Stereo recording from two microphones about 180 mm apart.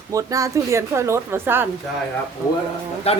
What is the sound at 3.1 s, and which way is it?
Speech, 35° left (ahead or behind).